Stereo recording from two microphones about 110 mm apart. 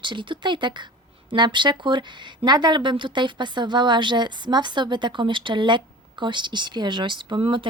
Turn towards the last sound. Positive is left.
turn(degrees=-50)  # may be behind; listen again after turning